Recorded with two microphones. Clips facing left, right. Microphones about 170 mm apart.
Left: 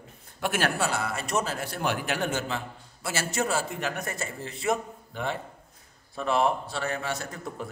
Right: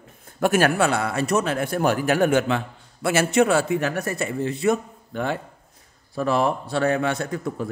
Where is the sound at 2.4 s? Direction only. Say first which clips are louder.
Right 8 dB; 90° right.